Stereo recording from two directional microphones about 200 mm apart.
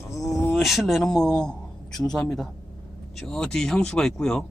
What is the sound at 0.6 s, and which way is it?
Speech, centre (ahead or behind).